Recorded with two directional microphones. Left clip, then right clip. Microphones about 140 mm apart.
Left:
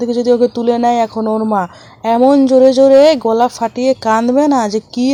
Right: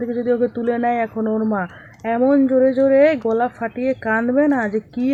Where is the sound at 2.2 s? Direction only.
30° left (ahead or behind).